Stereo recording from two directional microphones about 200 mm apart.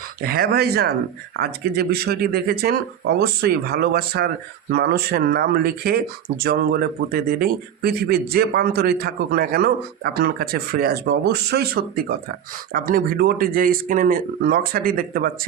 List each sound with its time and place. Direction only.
0.2 s speech: 50° right (ahead or behind)